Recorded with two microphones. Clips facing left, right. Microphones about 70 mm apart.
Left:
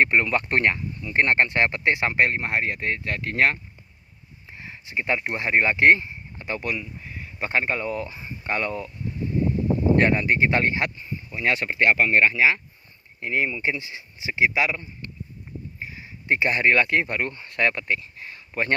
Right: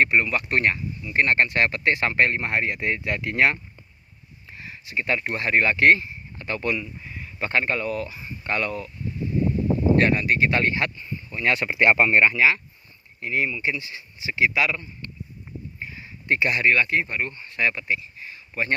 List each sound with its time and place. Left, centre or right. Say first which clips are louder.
0.0 s speech: even; left; by 3.6 s centre
4.5 s speech: even; left
6.7 s speech: right 3 dB; centre
7.3 s speech: right 1 dB; centre; by 8.9 s left
10.0 s speech: even; left; by 11.5 s centre
11.5 s speech: right 1 dB; centre
11.8 s speech: right 1 dB; right
12.4 s speech: even; left
13.1 s speech: even; left
15.8 s a sound: right 1 dB; centre
16.2 s speech: even; left
16.5 s speech: left 1 dB; left